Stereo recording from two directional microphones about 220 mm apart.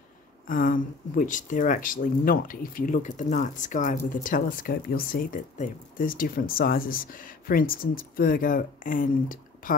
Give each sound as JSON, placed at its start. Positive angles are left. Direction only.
{"t": 0.5, "sound": "speech", "side_deg": 40}